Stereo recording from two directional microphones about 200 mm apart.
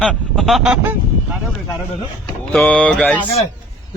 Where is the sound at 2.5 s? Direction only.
5° left (ahead or behind).